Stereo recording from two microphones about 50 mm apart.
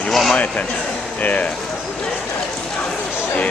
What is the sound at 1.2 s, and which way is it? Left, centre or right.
Speech, left.